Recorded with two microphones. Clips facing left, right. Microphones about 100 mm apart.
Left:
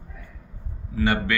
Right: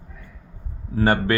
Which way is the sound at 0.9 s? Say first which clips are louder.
Right 4 dB; 40° right (ahead or behind).